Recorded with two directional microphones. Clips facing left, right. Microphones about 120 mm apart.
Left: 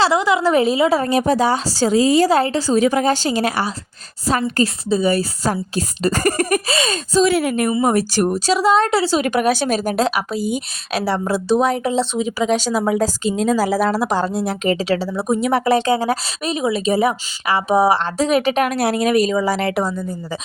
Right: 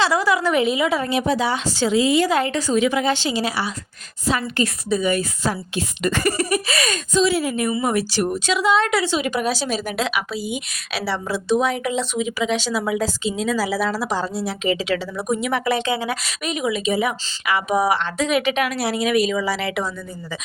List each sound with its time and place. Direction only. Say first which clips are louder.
0.0 s a woman's voice: left 3 dB; 25° left (ahead or behind); by 4.6 s 40° left (ahead or behind)
4.6 s a woman's voice: left 2 dB; 30° left (ahead or behind); by 6.6 s 50° left (ahead or behind)
6.7 s a woman's voice: left 3 dB; 30° left (ahead or behind)
7.3 s speech: left 3 dB; 60° left (ahead or behind)
7.7 s a woman's voice: left 4 dB; 40° left (ahead or behind)
9.2 s a woman's voice: left 5 dB; 55° left (ahead or behind); by 20.4 s 40° left (ahead or behind)